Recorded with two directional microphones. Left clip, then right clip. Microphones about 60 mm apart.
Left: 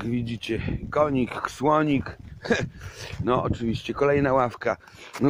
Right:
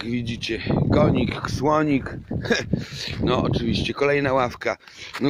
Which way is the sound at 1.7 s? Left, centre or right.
Right.